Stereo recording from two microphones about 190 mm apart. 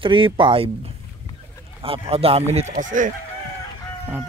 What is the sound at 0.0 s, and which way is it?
Speech, 25° right (ahead or behind).